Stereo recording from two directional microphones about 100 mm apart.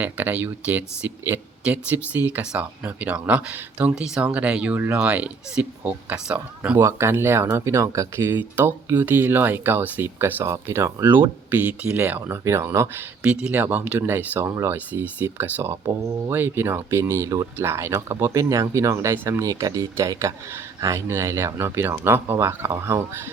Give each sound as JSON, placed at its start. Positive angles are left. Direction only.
{"t": 0.0, "sound": "speech", "side_deg": -15}
{"t": 15.0, "sound": "speech", "side_deg": -20}
{"t": 19.5, "sound": "speech", "side_deg": -35}